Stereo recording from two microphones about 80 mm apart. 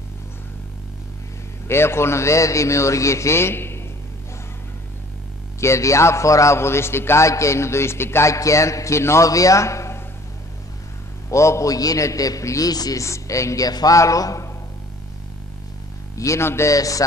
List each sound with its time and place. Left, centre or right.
1.7 s a man's voice: left
5.6 s a man's voice: left
11.2 s a man's voice: left
13.0 s a man's voice: left
16.2 s a man's voice: left